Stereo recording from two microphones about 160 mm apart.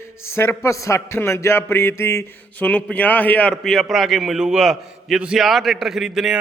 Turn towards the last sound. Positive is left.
turn(degrees=0)  # may be behind; listen again after turning